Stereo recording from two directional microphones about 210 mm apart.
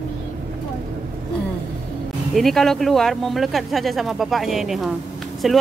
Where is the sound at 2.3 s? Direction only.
Centre (ahead or behind).